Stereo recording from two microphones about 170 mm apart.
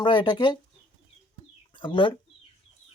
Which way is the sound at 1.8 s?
30° left (ahead or behind).